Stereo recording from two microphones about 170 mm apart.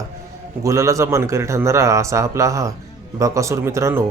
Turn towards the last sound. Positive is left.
turn(degrees=-15)  # may be behind; listen again after turning